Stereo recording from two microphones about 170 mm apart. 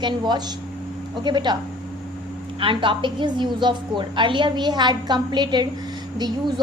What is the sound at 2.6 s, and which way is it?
A woman's voice, 30° right (ahead or behind).